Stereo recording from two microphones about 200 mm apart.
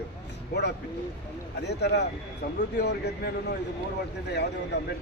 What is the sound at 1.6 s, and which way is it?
Speech, 55° left (ahead or behind).